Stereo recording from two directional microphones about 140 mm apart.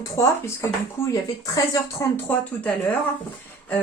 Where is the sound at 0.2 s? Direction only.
20° left (ahead or behind).